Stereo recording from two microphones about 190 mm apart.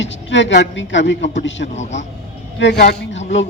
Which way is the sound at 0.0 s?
75° left (ahead or behind).